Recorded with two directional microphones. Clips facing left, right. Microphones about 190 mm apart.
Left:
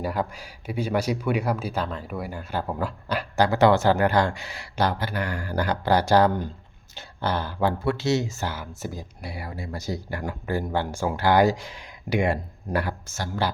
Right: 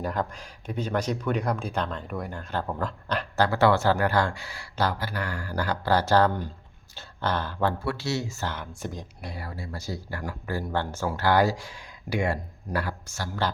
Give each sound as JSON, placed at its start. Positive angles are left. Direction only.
{"t": 0.0, "sound": "speech", "side_deg": 10}
{"t": 8.5, "sound": "speech", "side_deg": 5}